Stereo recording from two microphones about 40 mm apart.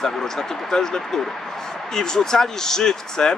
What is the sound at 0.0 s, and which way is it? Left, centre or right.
Speech, centre.